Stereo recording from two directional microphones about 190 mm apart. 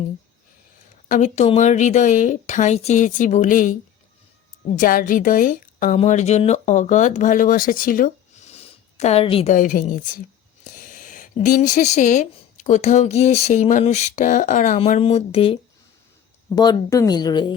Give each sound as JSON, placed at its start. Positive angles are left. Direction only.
{"t": 1.0, "sound": "speech", "side_deg": 40}
{"t": 4.8, "sound": "a woman's voice", "side_deg": 45}
{"t": 16.6, "sound": "speech", "side_deg": 20}